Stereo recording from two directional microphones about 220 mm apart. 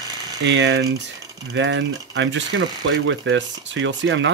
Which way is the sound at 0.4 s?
55° right (ahead or behind).